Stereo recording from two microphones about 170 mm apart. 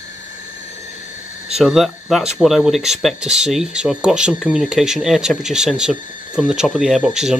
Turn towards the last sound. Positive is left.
turn(degrees=-5)  # may be behind; listen again after turning